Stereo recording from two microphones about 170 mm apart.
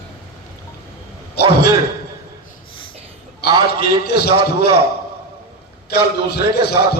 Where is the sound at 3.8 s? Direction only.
70° left (ahead or behind).